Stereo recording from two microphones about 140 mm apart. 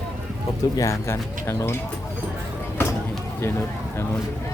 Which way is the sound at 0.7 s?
25° left (ahead or behind).